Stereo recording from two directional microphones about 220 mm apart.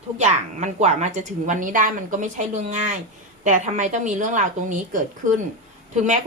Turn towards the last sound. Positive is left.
turn(degrees=-35)  # may be behind; listen again after turning